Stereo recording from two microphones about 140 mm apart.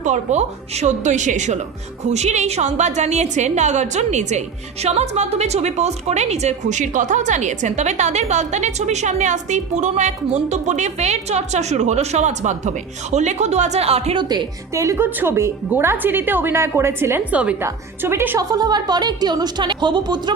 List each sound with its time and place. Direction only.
0.0 s a woman's voice: 60° right (ahead or behind)
14.3 s a woman's voice: 25° right (ahead or behind)
18.5 s a woman's voice: 30° right (ahead or behind)